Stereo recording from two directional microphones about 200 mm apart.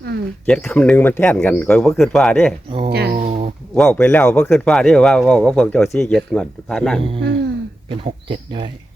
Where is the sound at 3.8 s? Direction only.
5° left (ahead or behind).